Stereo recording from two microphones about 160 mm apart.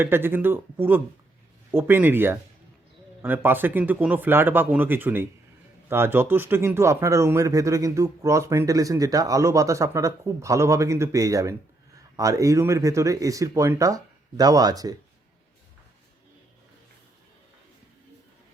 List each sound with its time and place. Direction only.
0.0 s speech: 15° right (ahead or behind)